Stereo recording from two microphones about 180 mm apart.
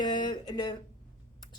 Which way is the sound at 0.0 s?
25° left (ahead or behind).